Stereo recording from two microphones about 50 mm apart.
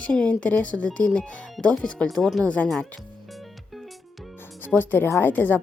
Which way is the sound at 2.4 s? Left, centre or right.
Left.